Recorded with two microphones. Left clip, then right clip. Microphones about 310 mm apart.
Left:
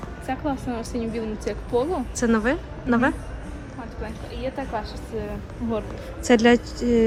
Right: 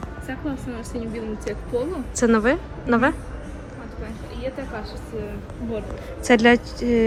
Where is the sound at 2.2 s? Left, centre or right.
Centre.